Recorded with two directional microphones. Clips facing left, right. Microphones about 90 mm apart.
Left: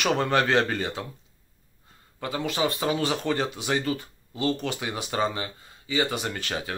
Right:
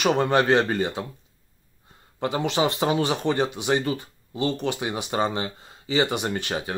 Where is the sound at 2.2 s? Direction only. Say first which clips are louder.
Right 4 dB; 25° right (ahead or behind).